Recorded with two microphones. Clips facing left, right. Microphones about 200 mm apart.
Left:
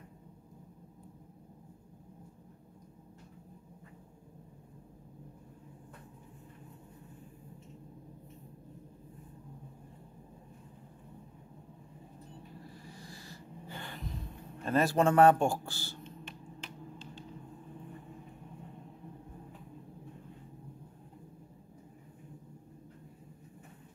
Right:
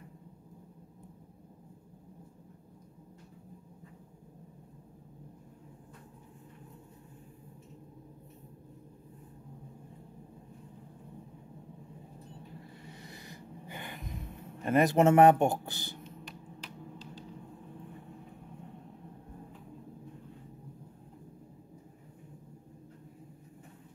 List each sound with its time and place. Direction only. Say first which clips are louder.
12.8 s snort: right 1 dB; 20° right (ahead or behind)
14.6 s speech: right 3 dB; 15° right (ahead or behind)